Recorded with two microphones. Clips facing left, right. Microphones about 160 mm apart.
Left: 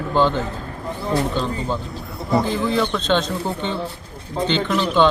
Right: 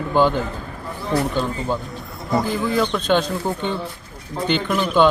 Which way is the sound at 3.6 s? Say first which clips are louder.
Even; 20° left (ahead or behind).